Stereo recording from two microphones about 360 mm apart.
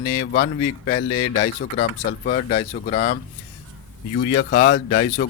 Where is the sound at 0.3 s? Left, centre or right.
Left.